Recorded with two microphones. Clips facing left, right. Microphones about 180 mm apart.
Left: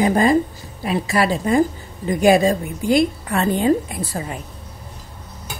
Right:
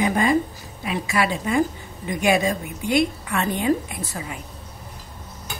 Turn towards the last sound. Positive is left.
turn(degrees=35)  # may be behind; listen again after turning